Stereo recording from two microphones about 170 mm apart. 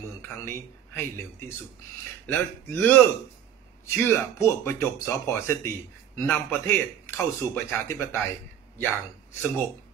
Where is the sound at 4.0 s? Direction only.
15° left (ahead or behind).